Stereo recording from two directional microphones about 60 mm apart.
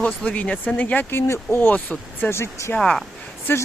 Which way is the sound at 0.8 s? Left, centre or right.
Left.